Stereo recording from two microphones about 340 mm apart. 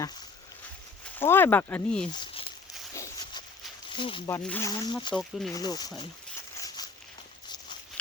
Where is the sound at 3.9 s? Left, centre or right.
Centre.